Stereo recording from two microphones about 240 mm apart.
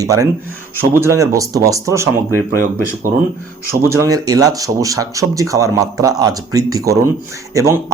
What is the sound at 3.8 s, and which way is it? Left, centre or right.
Speech, centre.